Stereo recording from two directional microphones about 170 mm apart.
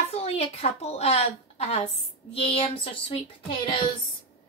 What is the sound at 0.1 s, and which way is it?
A woman's voice, 35° left (ahead or behind).